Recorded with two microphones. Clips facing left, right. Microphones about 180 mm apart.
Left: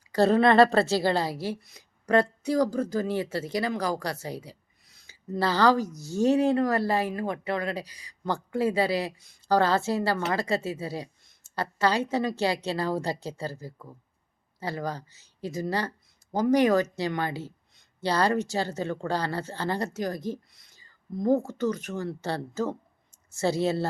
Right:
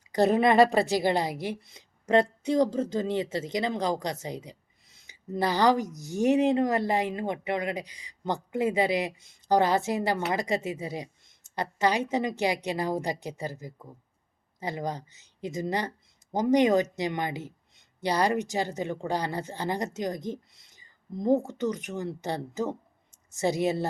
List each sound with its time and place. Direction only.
0.1 s a woman's voice: 20° right (ahead or behind)